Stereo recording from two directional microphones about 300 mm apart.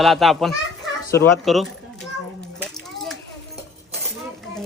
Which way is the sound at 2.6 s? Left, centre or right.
Centre.